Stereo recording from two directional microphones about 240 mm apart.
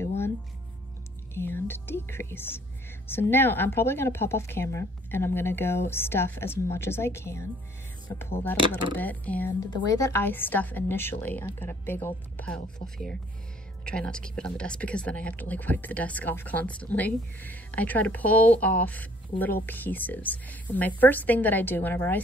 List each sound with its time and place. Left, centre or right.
1.3 s speech: centre
8.5 s speech: centre
8.9 s speech: centre